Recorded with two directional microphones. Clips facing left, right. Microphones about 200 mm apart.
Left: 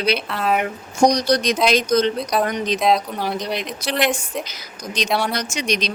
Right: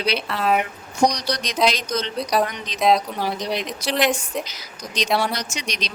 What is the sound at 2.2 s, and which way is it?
Speech, centre (ahead or behind).